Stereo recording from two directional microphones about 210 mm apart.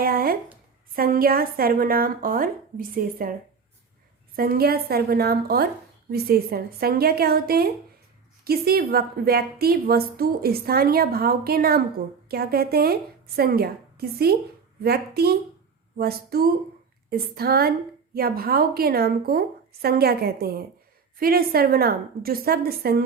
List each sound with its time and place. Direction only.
0.0 s a woman's voice: 45° right (ahead or behind)
4.4 s a woman's voice: 45° right (ahead or behind)